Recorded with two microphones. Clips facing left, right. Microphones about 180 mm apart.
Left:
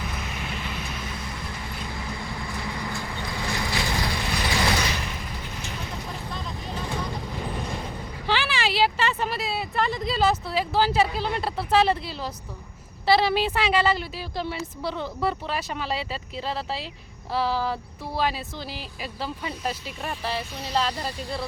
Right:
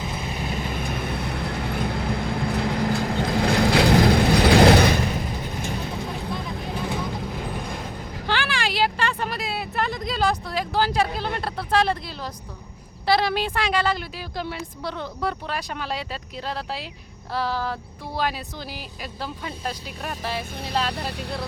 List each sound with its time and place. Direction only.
0.0 s vehicle: 25° right (ahead or behind); by 5.0 s 55° right (ahead or behind)
6.3 s vehicle: 10° right (ahead or behind)
11.2 s speech: 5° left (ahead or behind)
20.9 s speech: 65° right (ahead or behind)